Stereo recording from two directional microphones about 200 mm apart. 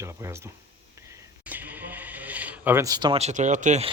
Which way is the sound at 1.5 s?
10° right (ahead or behind).